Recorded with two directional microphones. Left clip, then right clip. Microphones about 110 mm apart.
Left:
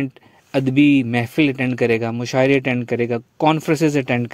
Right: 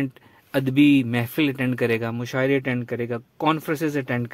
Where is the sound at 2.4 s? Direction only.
35° left (ahead or behind).